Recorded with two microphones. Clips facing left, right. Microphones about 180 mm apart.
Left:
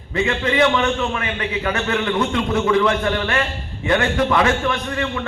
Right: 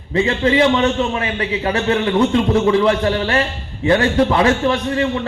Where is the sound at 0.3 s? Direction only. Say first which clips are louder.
Right 3 dB; 30° right (ahead or behind).